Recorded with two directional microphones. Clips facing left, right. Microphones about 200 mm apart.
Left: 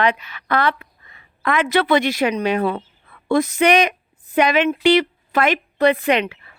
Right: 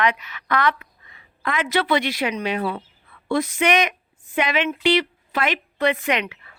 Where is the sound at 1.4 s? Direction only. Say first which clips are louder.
Left 4 dB; 55° left (ahead or behind).